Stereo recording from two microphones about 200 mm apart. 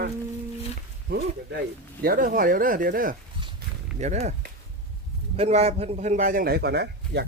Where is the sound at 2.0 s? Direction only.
45° right (ahead or behind).